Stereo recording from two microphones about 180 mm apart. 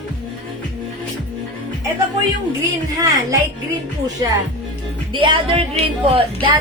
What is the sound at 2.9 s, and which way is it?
Speech, 20° right (ahead or behind).